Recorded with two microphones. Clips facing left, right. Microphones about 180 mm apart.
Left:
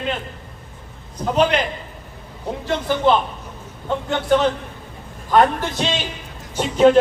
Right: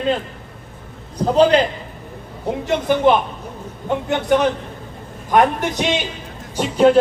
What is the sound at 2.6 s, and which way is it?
A man's voice, 15° right (ahead or behind).